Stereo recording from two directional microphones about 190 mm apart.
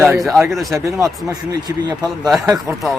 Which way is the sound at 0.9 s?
15° right (ahead or behind).